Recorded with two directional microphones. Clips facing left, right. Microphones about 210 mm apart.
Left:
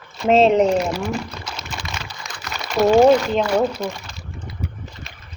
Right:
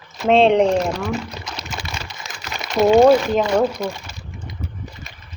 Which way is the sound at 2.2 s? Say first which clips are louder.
Even; 25° right (ahead or behind).